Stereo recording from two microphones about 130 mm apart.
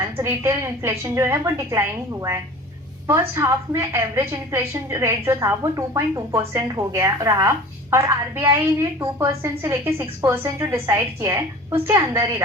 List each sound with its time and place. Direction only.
0.2 s a woman's voice: 20° right (ahead or behind)
3.1 s a woman's voice: 20° right (ahead or behind)